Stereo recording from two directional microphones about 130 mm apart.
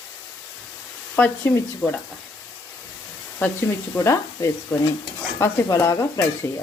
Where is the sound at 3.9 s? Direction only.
20° left (ahead or behind).